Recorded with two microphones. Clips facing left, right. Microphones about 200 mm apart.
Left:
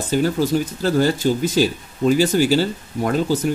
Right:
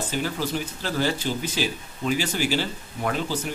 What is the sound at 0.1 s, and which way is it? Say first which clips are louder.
Speech: left 12 dB; 40° left (ahead or behind).